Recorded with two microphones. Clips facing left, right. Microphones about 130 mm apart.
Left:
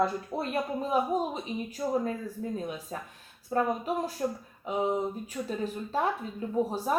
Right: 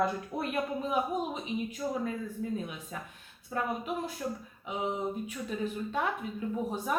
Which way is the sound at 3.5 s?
35° left (ahead or behind).